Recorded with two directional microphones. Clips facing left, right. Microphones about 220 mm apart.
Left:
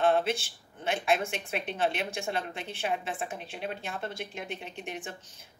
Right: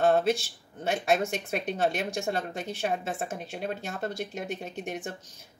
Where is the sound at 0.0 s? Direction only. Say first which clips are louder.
Right 3 dB; 40° right (ahead or behind).